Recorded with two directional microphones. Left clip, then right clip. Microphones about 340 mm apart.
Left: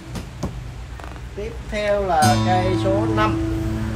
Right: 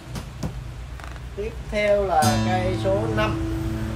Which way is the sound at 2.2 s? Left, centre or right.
Left.